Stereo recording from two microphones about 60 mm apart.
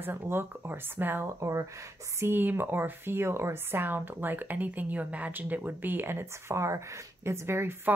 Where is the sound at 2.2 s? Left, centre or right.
Right.